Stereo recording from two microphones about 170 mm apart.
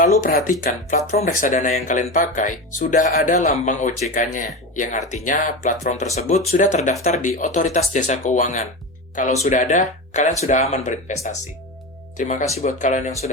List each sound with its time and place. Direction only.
0.0 s speech: 50° left (ahead or behind)